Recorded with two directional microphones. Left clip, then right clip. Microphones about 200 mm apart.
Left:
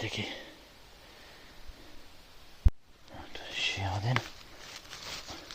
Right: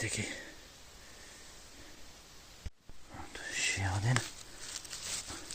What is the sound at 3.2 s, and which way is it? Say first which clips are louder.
Whispering: left 2 dB; 5° right (ahead or behind).